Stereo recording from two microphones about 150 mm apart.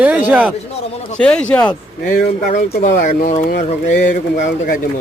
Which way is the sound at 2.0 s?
85° left.